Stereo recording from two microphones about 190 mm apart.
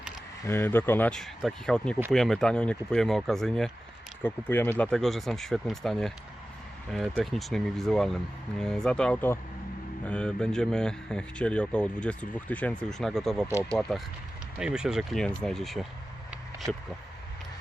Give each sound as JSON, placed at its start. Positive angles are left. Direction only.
{"t": 0.4, "sound": "speech", "side_deg": 10}